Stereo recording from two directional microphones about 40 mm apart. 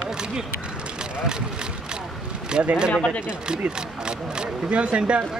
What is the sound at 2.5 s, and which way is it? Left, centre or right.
Speech, right.